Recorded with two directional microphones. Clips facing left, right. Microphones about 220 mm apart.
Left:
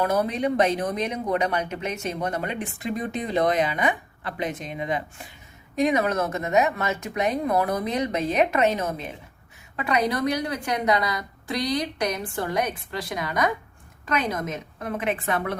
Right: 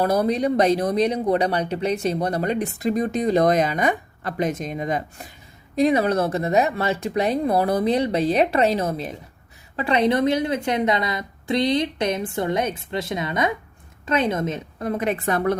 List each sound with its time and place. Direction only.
0.0 s a woman's voice: 35° right (ahead or behind)